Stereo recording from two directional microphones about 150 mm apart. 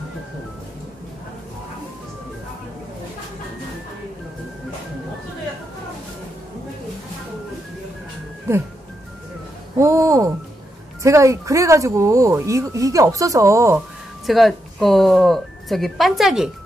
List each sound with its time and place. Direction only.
9.8 s a sound: 20° right (ahead or behind)
11.0 s speech: 20° right (ahead or behind)
14.2 s speech: centre (ahead or behind)